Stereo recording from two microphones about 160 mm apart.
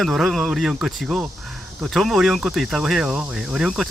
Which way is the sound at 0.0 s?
5° right (ahead or behind).